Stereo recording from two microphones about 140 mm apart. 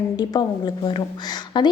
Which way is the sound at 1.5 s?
35° left (ahead or behind).